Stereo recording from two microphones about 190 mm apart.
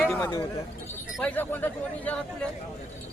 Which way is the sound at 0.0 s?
5° left (ahead or behind).